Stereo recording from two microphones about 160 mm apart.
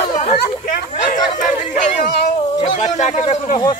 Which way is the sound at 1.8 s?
50° left (ahead or behind).